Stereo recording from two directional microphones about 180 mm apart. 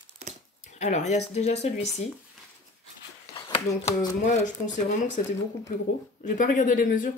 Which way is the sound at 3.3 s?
25° left (ahead or behind).